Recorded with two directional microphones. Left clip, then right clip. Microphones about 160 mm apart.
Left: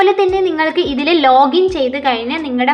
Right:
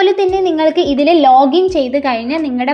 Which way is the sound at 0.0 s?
40° right (ahead or behind).